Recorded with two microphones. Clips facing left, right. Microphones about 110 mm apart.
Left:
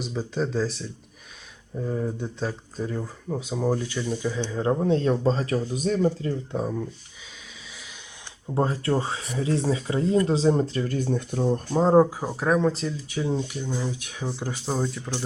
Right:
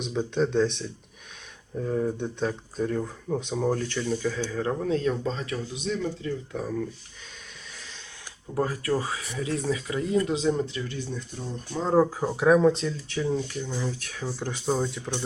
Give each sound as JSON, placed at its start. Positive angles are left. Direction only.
{"t": 0.0, "sound": "speech", "side_deg": 0}
{"t": 6.1, "sound": "speech", "side_deg": 30}
{"t": 8.5, "sound": "speech", "side_deg": 25}
{"t": 11.7, "sound": "speech", "side_deg": 40}
{"t": 12.1, "sound": "speech", "side_deg": 5}
{"t": 14.5, "sound": "speech", "side_deg": 5}